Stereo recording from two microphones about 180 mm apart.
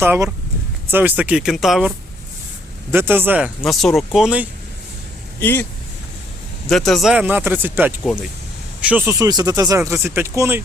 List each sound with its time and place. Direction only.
0.0 s speech: 10° right (ahead or behind)
2.9 s speech: 10° right (ahead or behind)
3.7 s speech: centre (ahead or behind)
5.4 s speech: 10° left (ahead or behind)
6.7 s speech: centre (ahead or behind); by 10.6 s 15° right (ahead or behind)